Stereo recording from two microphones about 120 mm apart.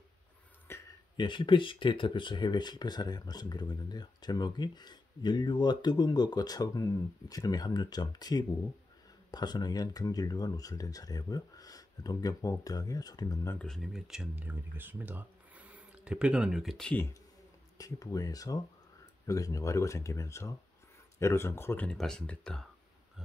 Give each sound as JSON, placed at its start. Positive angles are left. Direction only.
{"t": 0.7, "sound": "a sound", "side_deg": 20}
{"t": 1.1, "sound": "speech", "side_deg": 40}
{"t": 13.6, "sound": "speech", "side_deg": 0}
{"t": 17.7, "sound": "speech", "side_deg": 30}
{"t": 21.9, "sound": "speech", "side_deg": 5}